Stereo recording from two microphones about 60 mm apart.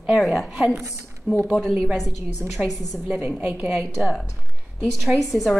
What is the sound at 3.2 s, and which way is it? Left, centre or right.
Speech, right.